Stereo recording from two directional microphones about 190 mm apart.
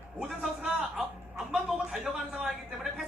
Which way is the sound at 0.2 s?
Centre (ahead or behind).